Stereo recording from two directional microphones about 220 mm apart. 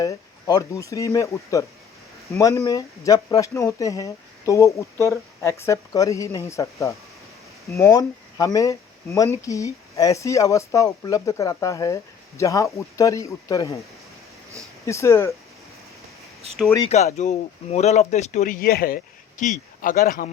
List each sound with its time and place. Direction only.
0.0 s speech: 15° left (ahead or behind)
14.8 s speech: 15° left (ahead or behind)
16.8 s speech: 30° left (ahead or behind)